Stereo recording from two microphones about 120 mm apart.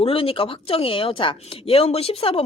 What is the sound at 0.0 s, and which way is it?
Speech, 50° left (ahead or behind).